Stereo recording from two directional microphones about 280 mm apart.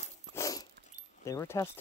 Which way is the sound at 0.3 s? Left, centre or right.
Centre.